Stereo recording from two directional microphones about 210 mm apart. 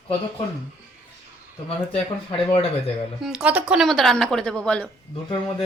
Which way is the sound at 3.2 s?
5° right (ahead or behind).